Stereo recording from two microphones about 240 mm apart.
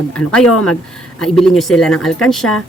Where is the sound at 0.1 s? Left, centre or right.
Centre.